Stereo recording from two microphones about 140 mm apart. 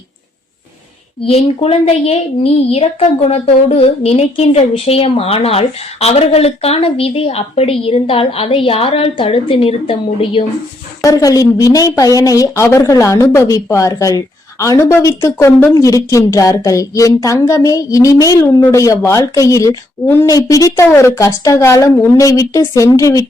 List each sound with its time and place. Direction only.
1.2 s a woman's voice: 45° left (ahead or behind)
11.0 s a woman's voice: 25° left (ahead or behind)